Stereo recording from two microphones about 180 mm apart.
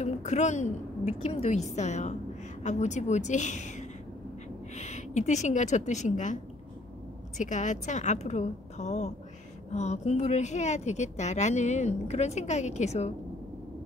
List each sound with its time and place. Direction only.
0.0 s a woman's voice: 40° left (ahead or behind)